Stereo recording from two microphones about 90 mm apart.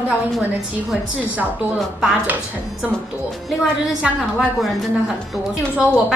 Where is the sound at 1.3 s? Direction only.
15° right (ahead or behind).